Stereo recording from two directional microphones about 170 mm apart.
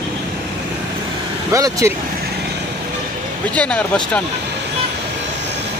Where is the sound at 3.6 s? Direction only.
5° left (ahead or behind).